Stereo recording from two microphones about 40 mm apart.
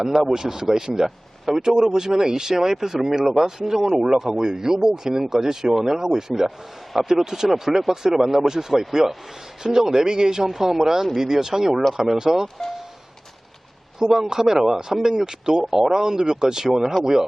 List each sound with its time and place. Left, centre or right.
0.0 s speech: centre
14.0 s speech: centre